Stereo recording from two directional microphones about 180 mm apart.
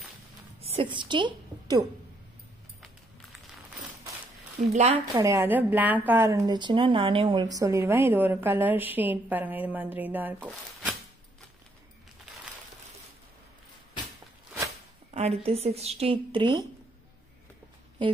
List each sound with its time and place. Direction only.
0.7 s a woman's voice: 30° right (ahead or behind)
4.6 s speech: 40° right (ahead or behind)
5.2 s a woman's voice: 15° right (ahead or behind)
15.0 s speech: 35° right (ahead or behind)